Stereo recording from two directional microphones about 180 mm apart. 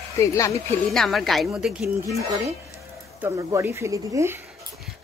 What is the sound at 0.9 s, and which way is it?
Speech, centre (ahead or behind).